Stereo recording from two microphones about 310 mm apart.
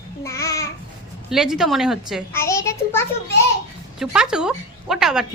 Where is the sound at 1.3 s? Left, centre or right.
Centre.